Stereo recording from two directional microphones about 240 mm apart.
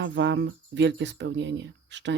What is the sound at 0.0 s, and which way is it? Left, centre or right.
Speech, right.